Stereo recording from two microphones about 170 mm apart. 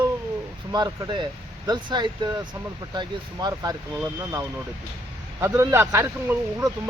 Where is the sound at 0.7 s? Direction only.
20° right (ahead or behind).